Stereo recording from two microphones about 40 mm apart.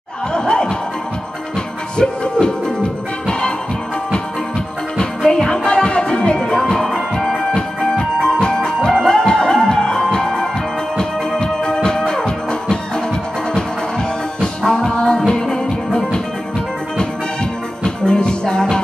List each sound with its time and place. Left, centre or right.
0.3 s music: left
2.4 s music: left
4.9 s music: centre
14.6 s music: centre
17.8 s music: left